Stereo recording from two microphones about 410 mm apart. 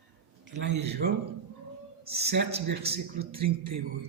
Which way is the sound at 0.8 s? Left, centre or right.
Centre.